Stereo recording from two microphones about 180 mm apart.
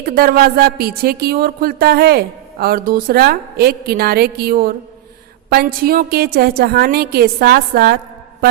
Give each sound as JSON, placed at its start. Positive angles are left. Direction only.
{"t": 0.0, "sound": "speech", "side_deg": -55}